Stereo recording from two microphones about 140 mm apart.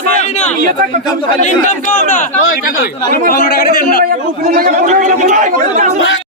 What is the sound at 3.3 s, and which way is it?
Speech, 90° left.